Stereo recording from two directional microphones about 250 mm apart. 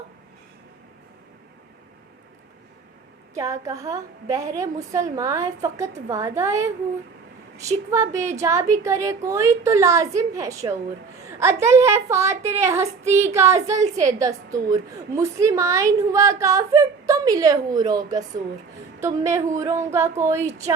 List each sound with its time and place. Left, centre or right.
3.3 s a woman's voice: centre
7.9 s a woman's voice: centre
12.8 s speech: right
13.3 s a woman's voice: centre